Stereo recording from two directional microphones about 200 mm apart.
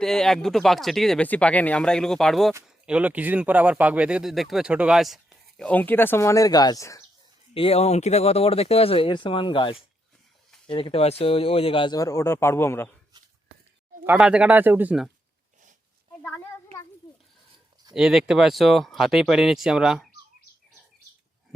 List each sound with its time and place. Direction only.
0.0 s speech: centre (ahead or behind)
2.5 s speech: 10° right (ahead or behind); by 7.0 s 15° left (ahead or behind)
7.5 s speech: 30° left (ahead or behind); by 12.9 s 10° left (ahead or behind)
14.0 s speech: 5° right (ahead or behind)
17.9 s speech: centre (ahead or behind)